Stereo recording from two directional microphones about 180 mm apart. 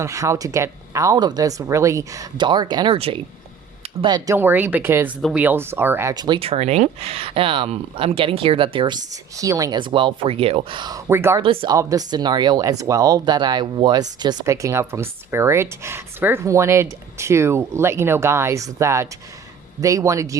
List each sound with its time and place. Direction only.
0.0 s speech: 15° right (ahead or behind)
4.4 s speech: 10° right (ahead or behind)
11.4 s speech: 30° right (ahead or behind)